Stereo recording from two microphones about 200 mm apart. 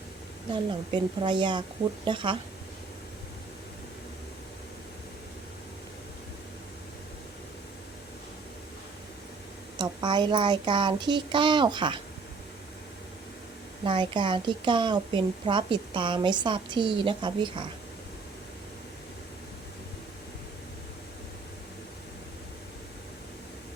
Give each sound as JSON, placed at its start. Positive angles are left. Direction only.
{"t": 0.5, "sound": "a woman's voice", "side_deg": -25}
{"t": 9.7, "sound": "a woman's voice", "side_deg": -20}
{"t": 13.8, "sound": "a woman's voice", "side_deg": -25}